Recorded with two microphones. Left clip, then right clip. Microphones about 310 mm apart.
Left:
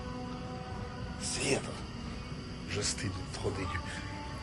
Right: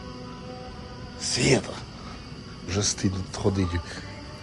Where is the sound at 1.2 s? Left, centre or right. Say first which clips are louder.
Right 10 dB; right.